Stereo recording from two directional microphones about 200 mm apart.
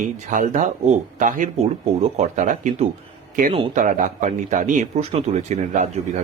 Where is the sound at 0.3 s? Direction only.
40° right (ahead or behind).